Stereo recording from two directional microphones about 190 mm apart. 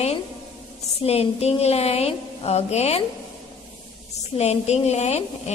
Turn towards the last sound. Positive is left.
turn(degrees=35)  # may be behind; listen again after turning